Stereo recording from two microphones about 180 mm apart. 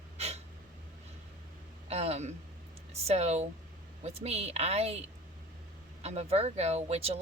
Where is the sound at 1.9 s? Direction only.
35° right (ahead or behind).